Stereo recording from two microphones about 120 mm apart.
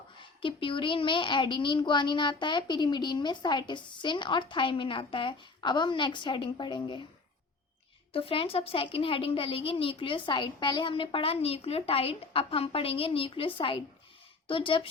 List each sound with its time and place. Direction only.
0.2 s a child's voice: 45° left (ahead or behind)
8.1 s a woman's voice: 50° left (ahead or behind)